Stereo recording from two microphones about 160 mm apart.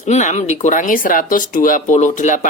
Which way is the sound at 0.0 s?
45° left (ahead or behind).